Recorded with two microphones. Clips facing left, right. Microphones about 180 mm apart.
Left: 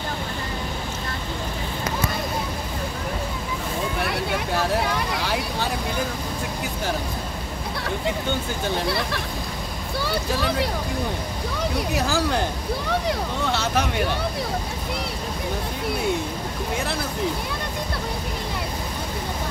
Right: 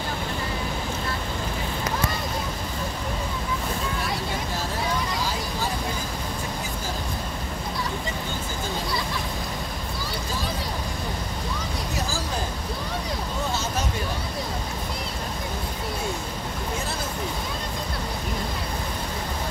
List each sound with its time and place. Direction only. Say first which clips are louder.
4.0 s vehicle: left 4 dB; 65° left (ahead or behind)
8.7 s hubbub: left 4 dB; 70° left (ahead or behind)
10.0 s boat: left 8 dB; 70° left (ahead or behind)
11.9 s vehicle: left 7 dB; 65° left (ahead or behind)
13.5 s speech: left 7 dB; 65° left (ahead or behind)